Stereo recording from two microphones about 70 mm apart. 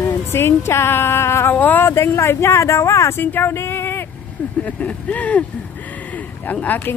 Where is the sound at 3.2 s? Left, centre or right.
Left.